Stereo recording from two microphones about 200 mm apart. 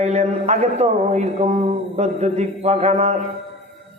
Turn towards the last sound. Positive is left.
turn(degrees=-35)  # may be behind; listen again after turning